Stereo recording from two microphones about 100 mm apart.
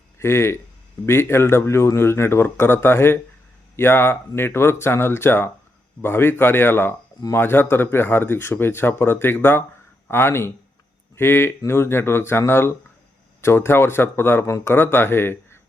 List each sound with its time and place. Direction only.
0.2 s a man's voice: 25° left (ahead or behind)